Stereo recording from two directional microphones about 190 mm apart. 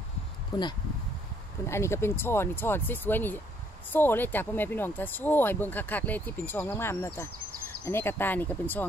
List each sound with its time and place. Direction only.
0.5 s speech: 25° left (ahead or behind)